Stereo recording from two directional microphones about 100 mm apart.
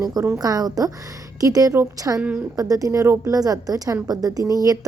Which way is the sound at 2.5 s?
35° right (ahead or behind).